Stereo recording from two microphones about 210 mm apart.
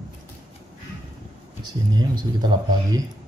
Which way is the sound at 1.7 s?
20° right (ahead or behind).